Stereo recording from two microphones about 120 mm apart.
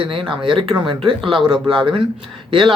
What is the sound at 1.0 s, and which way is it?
Speech, 45° right (ahead or behind).